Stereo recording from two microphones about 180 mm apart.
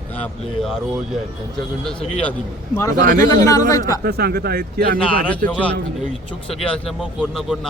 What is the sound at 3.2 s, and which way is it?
Speech, 20° left (ahead or behind).